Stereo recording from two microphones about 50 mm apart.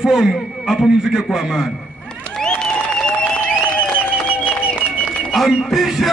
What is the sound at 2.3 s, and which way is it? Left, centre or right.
Applause, centre.